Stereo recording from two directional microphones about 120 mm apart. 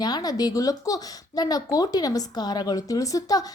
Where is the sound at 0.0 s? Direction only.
35° left (ahead or behind).